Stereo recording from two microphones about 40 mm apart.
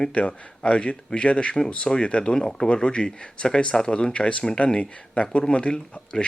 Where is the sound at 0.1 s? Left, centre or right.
Left.